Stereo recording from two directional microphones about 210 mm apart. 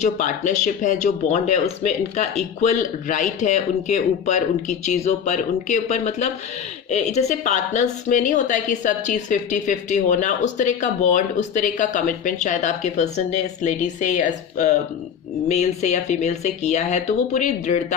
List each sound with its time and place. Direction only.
0.0 s a woman's voice: 35° left (ahead or behind)